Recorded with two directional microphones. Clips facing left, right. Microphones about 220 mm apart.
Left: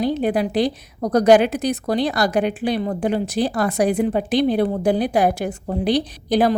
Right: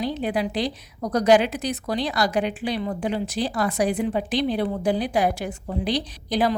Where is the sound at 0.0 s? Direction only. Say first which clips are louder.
Left 5 dB; 50° left (ahead or behind).